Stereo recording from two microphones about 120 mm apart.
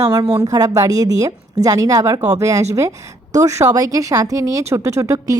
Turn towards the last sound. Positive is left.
turn(degrees=-25)  # may be behind; listen again after turning